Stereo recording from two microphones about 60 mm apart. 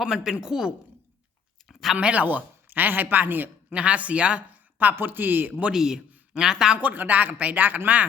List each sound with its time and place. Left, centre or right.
0.0 s speech: centre
1.6 s a sound: centre
2.0 s speech: right
3.8 s speech: right
5.7 s a man's voice: centre
6.7 s speech: right